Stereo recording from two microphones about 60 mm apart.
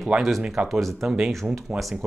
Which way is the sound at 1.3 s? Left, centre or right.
Centre.